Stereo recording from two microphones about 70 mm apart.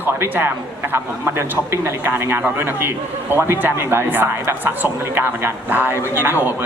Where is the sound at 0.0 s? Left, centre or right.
Right.